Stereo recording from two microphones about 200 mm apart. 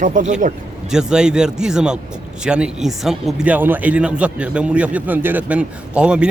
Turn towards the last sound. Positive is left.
turn(degrees=-5)  # may be behind; listen again after turning